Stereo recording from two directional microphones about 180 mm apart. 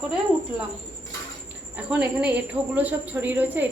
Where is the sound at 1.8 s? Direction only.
5° right (ahead or behind).